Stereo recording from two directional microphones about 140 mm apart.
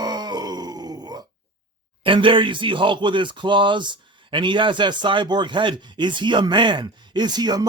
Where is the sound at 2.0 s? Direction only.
35° right (ahead or behind).